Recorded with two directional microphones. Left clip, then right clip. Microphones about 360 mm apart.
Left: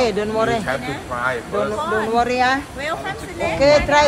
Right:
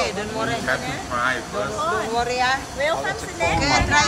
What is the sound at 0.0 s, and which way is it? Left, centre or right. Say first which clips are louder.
Speech: left 6 dB; centre.